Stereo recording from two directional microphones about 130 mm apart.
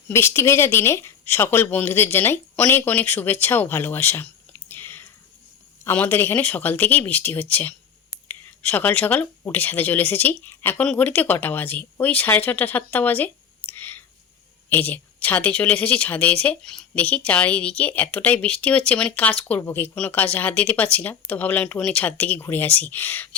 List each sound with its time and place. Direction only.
0.1 s a woman's voice: 20° left (ahead or behind)